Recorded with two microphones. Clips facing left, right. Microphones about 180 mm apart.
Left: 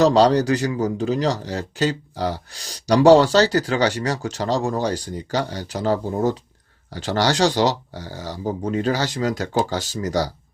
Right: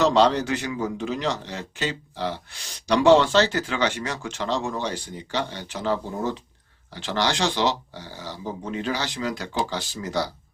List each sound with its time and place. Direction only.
0.0 s speech: 35° left (ahead or behind)